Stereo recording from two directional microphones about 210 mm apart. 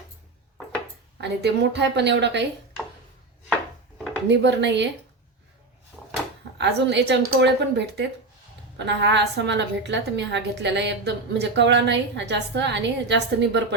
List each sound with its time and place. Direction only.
1.2 s a woman's voice: 55° right (ahead or behind)
4.3 s a woman's voice: 55° right (ahead or behind)
6.6 s a woman's voice: 55° right (ahead or behind)